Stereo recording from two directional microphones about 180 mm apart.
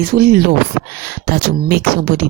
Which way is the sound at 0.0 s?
60° right (ahead or behind).